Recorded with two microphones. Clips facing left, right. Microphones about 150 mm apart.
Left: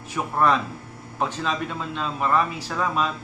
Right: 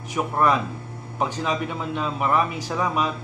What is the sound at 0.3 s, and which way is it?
A man's voice, 10° right (ahead or behind).